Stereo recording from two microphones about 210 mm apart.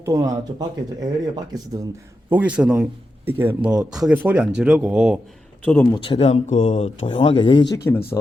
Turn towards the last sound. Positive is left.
turn(degrees=15)  # may be behind; listen again after turning